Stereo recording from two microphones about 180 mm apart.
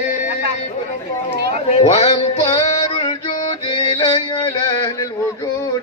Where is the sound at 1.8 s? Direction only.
35° left (ahead or behind).